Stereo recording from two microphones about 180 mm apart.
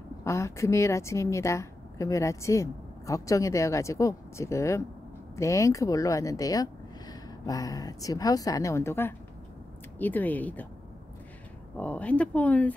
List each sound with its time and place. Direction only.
0.2 s a woman's voice: 15° left (ahead or behind)
11.7 s a woman's voice: 5° left (ahead or behind)